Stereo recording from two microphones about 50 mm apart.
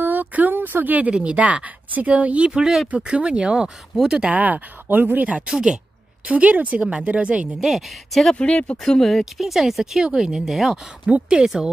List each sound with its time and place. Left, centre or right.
0.0 s a sound: right
1.1 s speech: right
4.4 s speech: right
5.5 s speech: centre
6.2 s speech: right
7.6 s speech: centre
8.4 s speech: left
8.8 s speech: centre
9.2 s speech: centre
11.1 s speech: right